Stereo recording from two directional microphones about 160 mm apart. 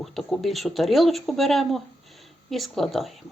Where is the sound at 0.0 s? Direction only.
Centre (ahead or behind).